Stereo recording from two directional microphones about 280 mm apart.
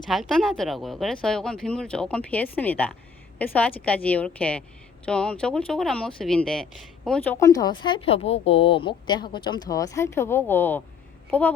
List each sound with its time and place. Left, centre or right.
0.1 s a woman's voice: centre